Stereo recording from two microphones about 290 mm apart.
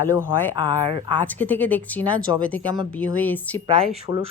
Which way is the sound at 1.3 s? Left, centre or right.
Centre.